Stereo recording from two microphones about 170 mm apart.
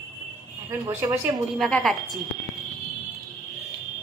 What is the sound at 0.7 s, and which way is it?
Speech, 15° right (ahead or behind).